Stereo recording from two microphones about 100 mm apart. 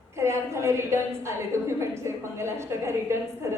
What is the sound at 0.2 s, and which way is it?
A woman's voice, 30° right (ahead or behind).